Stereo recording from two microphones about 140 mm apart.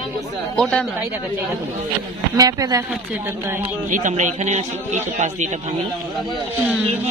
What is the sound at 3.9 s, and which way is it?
A man's voice, 60° right (ahead or behind).